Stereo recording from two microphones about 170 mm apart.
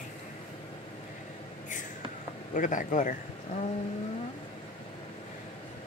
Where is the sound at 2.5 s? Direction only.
50° left (ahead or behind).